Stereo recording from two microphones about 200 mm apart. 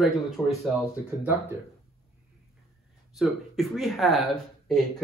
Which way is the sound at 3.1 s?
Centre (ahead or behind).